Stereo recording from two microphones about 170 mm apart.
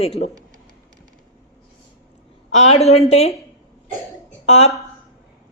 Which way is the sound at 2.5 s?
40° left (ahead or behind).